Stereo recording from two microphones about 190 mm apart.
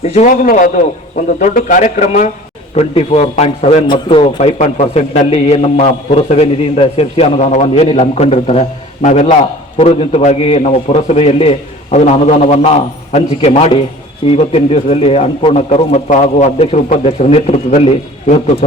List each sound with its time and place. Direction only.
0.0 s a man's voice: 40° left (ahead or behind)